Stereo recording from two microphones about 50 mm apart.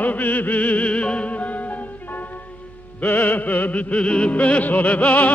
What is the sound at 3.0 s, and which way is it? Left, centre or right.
Music, left.